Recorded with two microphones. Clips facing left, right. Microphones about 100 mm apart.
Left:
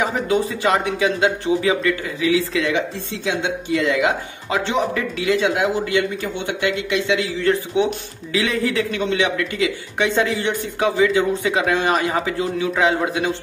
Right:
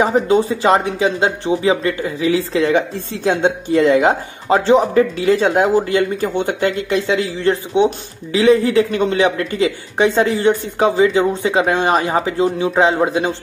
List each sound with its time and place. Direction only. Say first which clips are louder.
0.0 s speech: right 6 dB; 30° right (ahead or behind)